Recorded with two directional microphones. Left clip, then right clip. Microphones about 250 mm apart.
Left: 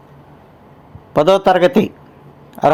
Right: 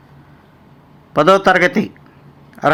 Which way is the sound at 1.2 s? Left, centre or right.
Centre.